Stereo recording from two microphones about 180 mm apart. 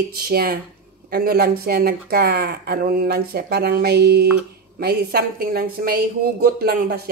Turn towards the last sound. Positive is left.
turn(degrees=-60)  # may be behind; listen again after turning